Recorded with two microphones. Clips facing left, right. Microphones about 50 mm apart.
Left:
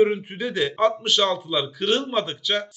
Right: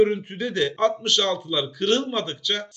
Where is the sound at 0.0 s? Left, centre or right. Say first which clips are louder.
Even; centre.